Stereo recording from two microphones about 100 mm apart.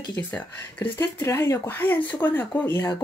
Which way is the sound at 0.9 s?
30° left (ahead or behind).